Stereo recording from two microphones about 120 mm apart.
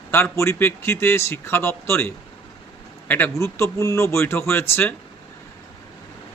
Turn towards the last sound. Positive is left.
turn(degrees=15)  # may be behind; listen again after turning